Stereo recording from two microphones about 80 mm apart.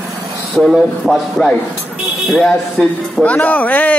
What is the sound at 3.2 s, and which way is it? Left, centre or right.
Speech, centre.